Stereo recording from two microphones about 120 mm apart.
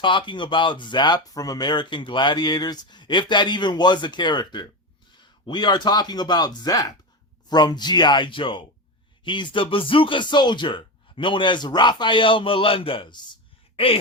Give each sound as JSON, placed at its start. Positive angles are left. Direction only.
{"t": 0.0, "sound": "speech", "side_deg": 40}